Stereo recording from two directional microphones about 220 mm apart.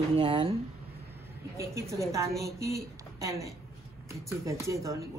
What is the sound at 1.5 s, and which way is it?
A woman's voice, 15° right (ahead or behind).